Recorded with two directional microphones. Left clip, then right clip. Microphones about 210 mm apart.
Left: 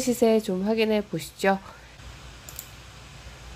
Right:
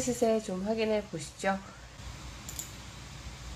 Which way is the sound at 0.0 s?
20° left (ahead or behind).